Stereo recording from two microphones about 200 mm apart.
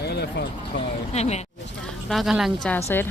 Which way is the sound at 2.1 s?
Centre (ahead or behind).